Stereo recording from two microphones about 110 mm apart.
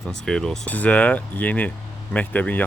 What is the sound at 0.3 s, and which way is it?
Speech, 5° left (ahead or behind).